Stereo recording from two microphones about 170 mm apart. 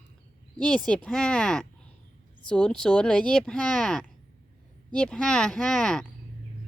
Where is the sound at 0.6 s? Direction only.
5° left (ahead or behind).